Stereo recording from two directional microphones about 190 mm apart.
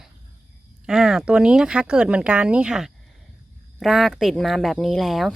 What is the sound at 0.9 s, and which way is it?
A woman's voice, 5° right (ahead or behind).